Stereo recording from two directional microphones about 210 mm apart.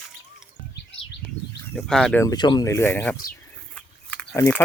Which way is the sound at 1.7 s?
Centre (ahead or behind).